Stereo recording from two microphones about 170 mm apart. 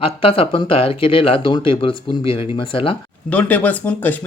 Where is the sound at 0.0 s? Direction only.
35° left (ahead or behind).